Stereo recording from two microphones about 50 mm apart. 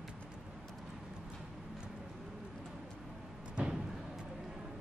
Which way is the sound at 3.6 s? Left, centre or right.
Right.